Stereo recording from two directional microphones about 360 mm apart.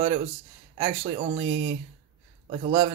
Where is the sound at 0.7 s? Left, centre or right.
Centre.